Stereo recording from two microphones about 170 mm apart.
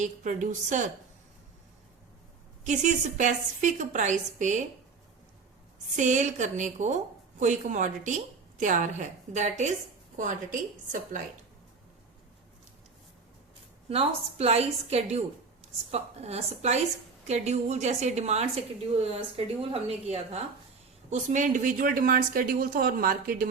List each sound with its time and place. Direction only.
0.0 s a woman's voice: 50° right (ahead or behind)
2.6 s a woman's voice: 45° right (ahead or behind)
6.0 s a woman's voice: 45° right (ahead or behind)
13.9 s a woman's voice: 35° right (ahead or behind); by 23.5 s 55° right (ahead or behind)